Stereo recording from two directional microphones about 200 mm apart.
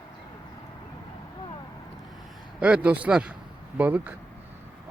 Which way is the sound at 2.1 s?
Centre (ahead or behind).